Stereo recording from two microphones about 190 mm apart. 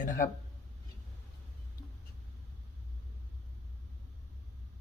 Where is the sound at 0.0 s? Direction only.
45° left (ahead or behind).